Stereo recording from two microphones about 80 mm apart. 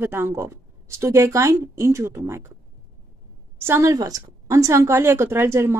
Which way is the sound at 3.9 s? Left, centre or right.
Right.